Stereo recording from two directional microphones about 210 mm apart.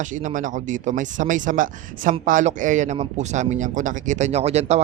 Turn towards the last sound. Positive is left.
turn(degrees=-30)  # may be behind; listen again after turning